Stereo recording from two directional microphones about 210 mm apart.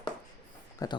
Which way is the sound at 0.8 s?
15° left (ahead or behind).